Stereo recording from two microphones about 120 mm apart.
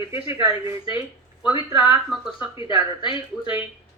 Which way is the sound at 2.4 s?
40° left (ahead or behind).